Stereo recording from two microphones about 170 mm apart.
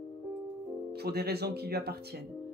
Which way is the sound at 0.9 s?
70° right (ahead or behind).